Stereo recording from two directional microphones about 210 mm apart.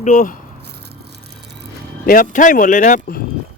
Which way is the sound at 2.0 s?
40° left (ahead or behind).